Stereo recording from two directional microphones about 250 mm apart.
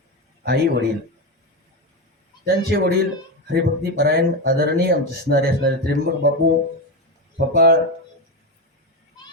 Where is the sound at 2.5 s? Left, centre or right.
Right.